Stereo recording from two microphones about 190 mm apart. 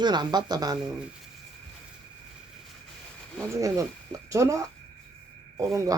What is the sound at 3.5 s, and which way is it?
Speech, 15° right (ahead or behind).